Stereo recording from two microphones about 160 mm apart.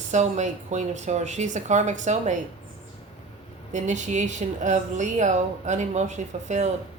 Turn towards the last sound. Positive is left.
turn(degrees=-45)  # may be behind; listen again after turning